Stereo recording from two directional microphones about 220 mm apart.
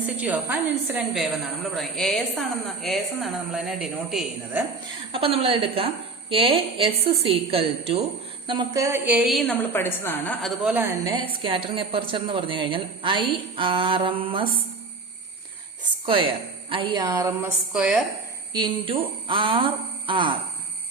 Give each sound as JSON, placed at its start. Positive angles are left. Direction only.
{"t": 0.0, "sound": "a woman's voice", "side_deg": -5}
{"t": 5.1, "sound": "a woman's voice", "side_deg": -25}
{"t": 16.0, "sound": "a woman's voice", "side_deg": -25}
{"t": 17.7, "sound": "a woman's voice", "side_deg": -5}
{"t": 18.5, "sound": "a woman's voice", "side_deg": -20}